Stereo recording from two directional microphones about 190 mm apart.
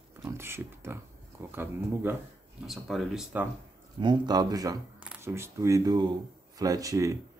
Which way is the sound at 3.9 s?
25° right (ahead or behind).